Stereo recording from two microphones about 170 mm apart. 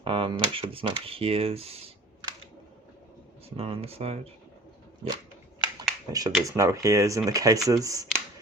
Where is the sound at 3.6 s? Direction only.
35° right (ahead or behind).